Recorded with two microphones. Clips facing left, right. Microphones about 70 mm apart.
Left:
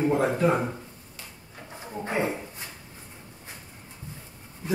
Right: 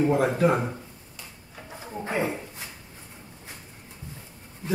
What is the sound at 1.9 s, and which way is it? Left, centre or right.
Speech, centre.